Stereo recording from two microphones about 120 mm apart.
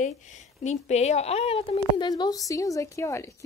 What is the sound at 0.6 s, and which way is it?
A woman's voice, 70° left (ahead or behind).